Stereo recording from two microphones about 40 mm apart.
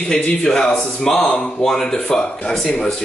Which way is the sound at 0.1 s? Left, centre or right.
Centre.